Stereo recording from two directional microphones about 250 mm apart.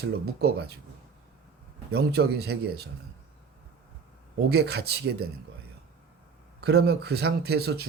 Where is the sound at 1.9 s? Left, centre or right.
Right.